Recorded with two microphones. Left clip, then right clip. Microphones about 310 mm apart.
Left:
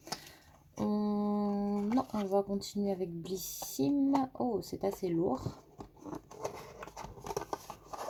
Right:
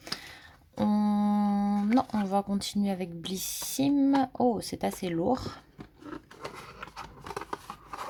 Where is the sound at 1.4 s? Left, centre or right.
Right.